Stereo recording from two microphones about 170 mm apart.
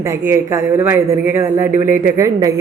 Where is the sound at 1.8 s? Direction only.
55° right (ahead or behind).